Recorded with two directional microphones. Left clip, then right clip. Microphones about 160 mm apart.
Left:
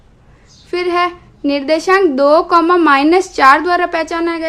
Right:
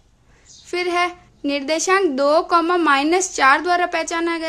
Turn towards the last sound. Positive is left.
turn(degrees=-25)  # may be behind; listen again after turning